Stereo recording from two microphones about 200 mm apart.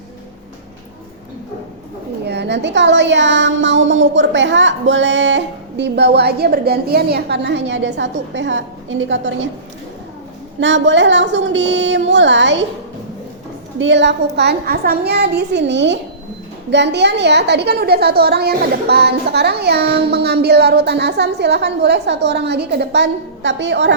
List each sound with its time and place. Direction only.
2.2 s a woman's voice: 60° right (ahead or behind)
10.6 s a woman's voice: 65° right (ahead or behind)
13.7 s a woman's voice: 65° right (ahead or behind)